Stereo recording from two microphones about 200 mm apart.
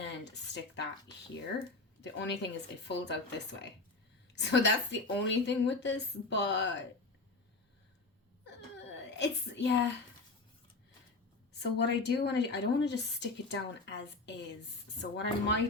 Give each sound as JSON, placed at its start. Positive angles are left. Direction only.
{"t": 0.3, "sound": "a woman's voice", "side_deg": 60}
{"t": 2.0, "sound": "a woman's voice", "side_deg": 60}
{"t": 8.4, "sound": "whimper", "side_deg": 60}
{"t": 11.6, "sound": "a woman's voice", "side_deg": 60}